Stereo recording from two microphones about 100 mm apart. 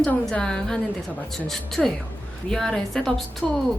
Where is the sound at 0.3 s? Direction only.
5° left (ahead or behind).